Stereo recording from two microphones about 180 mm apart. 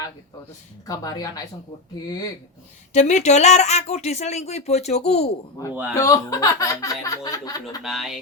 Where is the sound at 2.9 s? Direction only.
40° left (ahead or behind).